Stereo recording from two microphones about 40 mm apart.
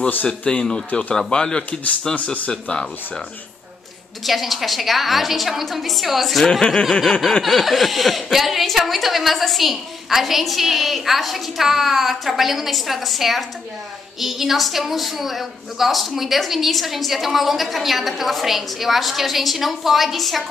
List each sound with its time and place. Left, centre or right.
0.3 s speech: left
4.3 s a woman's voice: centre